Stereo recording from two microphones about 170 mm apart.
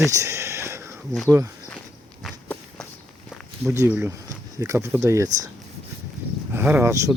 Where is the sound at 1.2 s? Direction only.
15° right (ahead or behind).